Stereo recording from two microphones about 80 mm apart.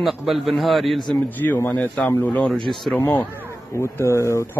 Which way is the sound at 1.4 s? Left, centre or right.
Left.